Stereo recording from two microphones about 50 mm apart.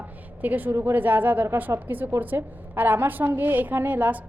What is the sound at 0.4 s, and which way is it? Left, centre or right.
A woman's voice, right.